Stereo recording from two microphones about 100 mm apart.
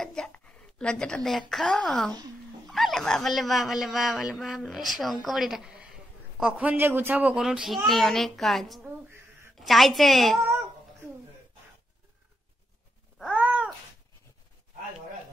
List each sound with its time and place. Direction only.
0.0 s a sound: 5° left (ahead or behind)
1.5 s a woman's voice: centre (ahead or behind)
6.5 s a man's voice: 15° right (ahead or behind)
7.3 s speech: 5° right (ahead or behind)
13.3 s cat: 15° right (ahead or behind)